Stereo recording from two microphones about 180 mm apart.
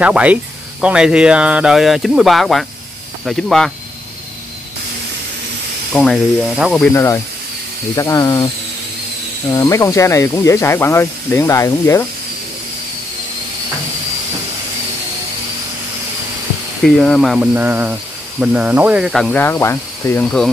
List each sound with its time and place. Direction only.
0.0 s speech: 5° right (ahead or behind)
5.9 s speech: centre (ahead or behind)
6.9 s speech: 15° left (ahead or behind)
9.5 s speech: 15° left (ahead or behind)
16.8 s speech: 5° left (ahead or behind)
17.6 s speech: 10° right (ahead or behind)
19.2 s speech: 10° left (ahead or behind)